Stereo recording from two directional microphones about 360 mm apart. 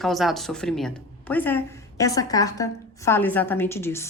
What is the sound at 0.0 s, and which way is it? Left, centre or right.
A woman's voice, centre.